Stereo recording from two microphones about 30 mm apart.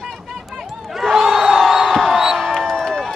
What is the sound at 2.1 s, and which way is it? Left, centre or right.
Music, centre.